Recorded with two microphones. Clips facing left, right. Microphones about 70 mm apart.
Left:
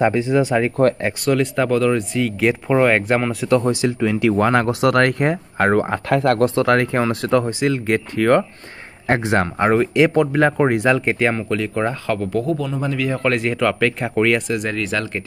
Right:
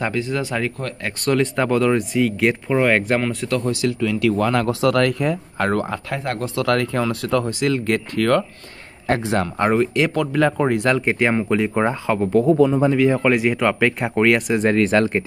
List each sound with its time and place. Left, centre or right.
0.0 s speech: left
1.2 s speech: centre
3.4 s speech: left
4.8 s speech: left
5.6 s speech: left
6.0 s speech: left
6.5 s speech: left
7.6 s speech: centre
9.6 s speech: centre
10.1 s speech: left
10.9 s a man's voice: centre; by 13.2 s right
13.2 s speech: centre
14.5 s speech: right